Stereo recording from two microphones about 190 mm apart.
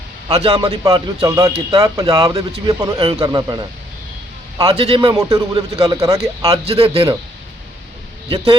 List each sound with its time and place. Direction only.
0.4 s speech: 20° right (ahead or behind)
5.1 s speech: 20° right (ahead or behind)
6.7 s a man's voice: 30° right (ahead or behind)